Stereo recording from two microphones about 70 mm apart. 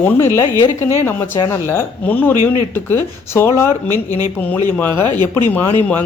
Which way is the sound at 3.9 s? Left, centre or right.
Right.